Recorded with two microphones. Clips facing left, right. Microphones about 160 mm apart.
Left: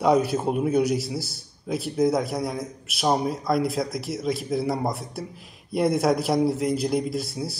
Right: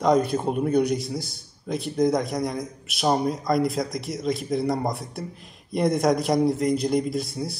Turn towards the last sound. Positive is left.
turn(degrees=0)  # may be behind; listen again after turning